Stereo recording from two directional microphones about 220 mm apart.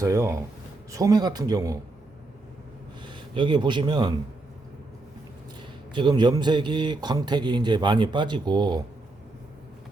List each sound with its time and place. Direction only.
0.0 s speech: 15° right (ahead or behind)
3.0 s a man's voice: 20° right (ahead or behind)
5.9 s a man's voice: 20° right (ahead or behind)